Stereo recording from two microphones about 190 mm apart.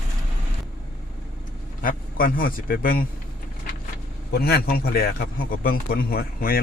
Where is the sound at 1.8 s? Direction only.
45° left (ahead or behind).